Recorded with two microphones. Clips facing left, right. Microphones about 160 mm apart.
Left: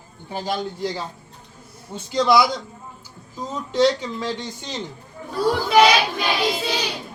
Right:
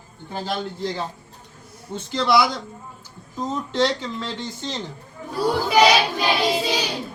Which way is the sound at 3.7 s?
10° left (ahead or behind).